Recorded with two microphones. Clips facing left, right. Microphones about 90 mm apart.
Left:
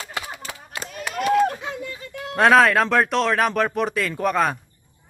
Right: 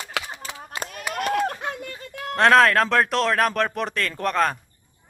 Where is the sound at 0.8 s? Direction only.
50° right (ahead or behind).